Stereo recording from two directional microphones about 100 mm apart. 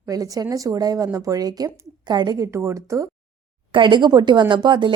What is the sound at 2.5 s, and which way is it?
Speech, 25° right (ahead or behind).